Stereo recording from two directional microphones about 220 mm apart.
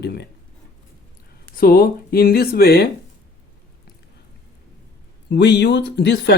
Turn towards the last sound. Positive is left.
turn(degrees=50)  # may be behind; listen again after turning